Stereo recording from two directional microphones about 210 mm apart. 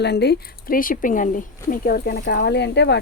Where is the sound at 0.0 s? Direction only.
50° left (ahead or behind).